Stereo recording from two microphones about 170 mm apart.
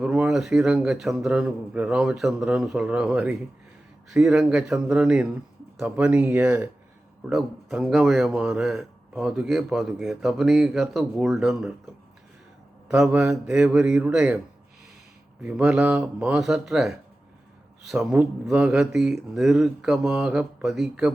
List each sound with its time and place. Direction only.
0.0 s speech: 5° right (ahead or behind)
12.9 s speech: 5° right (ahead or behind)
15.4 s speech: 5° right (ahead or behind)